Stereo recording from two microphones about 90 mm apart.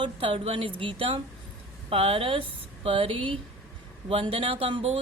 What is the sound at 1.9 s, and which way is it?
Speech, 90° right.